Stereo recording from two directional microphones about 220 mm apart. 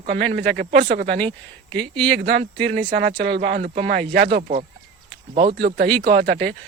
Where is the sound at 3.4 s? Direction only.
50° right (ahead or behind).